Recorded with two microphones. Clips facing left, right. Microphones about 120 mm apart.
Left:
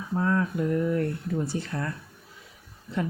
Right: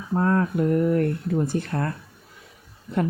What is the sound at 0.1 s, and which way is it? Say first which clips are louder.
Speech: right 4 dB; 50° right (ahead or behind).